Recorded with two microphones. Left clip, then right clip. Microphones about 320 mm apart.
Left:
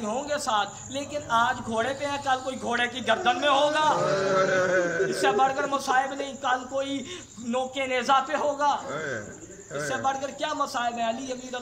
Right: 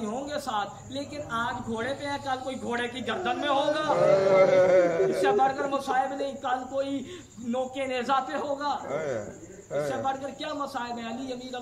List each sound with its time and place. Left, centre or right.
0.0 s speech: centre
4.4 s a man's voice: right
5.2 s speech: centre
9.8 s speech: centre